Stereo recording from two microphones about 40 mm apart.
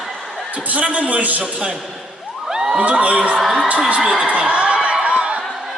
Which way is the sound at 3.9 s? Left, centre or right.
Right.